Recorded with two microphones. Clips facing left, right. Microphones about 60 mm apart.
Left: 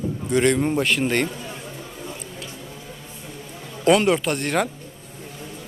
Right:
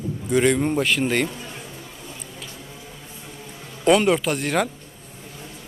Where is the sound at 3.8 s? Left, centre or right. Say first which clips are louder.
Even; centre.